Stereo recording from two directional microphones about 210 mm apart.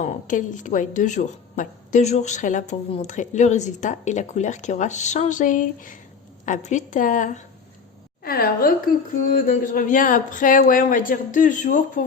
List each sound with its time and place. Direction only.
0.0 s a woman's voice: 35° left (ahead or behind)